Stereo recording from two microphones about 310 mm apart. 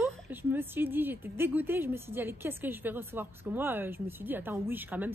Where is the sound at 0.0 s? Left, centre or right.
Centre.